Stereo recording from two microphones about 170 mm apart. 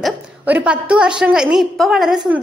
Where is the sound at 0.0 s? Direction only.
5° right (ahead or behind).